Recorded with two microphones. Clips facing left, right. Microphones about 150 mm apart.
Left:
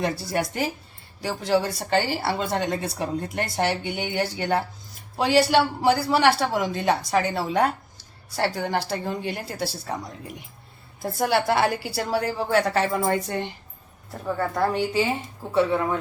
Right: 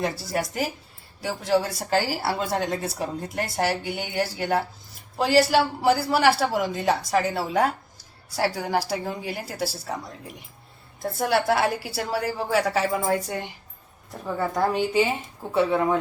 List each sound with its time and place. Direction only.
0.0 s a woman's voice: centre (ahead or behind)
14.7 s a woman's voice: 20° right (ahead or behind)